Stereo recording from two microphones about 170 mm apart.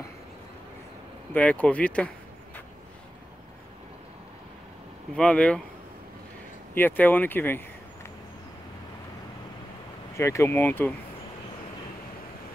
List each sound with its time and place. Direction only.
1.3 s speech: 10° left (ahead or behind)
5.1 s speech: 5° left (ahead or behind)
6.7 s speech: 10° left (ahead or behind)
10.1 s speech: 15° left (ahead or behind)